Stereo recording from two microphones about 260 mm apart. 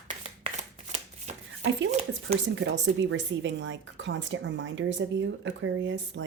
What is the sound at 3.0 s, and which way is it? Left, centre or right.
Speech, right.